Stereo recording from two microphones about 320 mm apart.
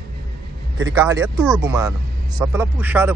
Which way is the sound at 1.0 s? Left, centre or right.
Centre.